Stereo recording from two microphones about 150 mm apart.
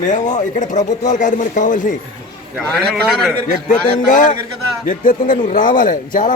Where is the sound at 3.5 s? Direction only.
60° left (ahead or behind).